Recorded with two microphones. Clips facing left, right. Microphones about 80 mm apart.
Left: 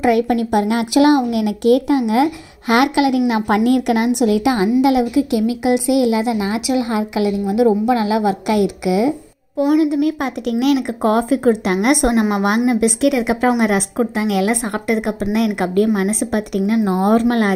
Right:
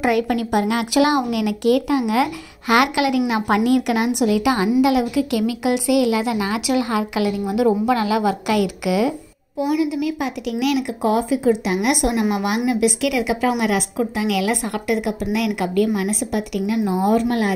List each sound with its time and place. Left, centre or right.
0.1 s a woman's voice: left
9.6 s speech: left